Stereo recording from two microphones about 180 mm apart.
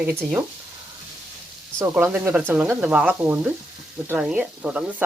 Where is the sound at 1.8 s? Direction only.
10° right (ahead or behind).